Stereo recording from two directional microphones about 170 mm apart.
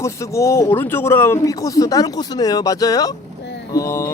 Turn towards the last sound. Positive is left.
turn(degrees=20)  # may be behind; listen again after turning